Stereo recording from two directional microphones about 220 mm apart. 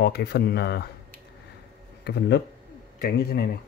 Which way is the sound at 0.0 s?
45° left (ahead or behind).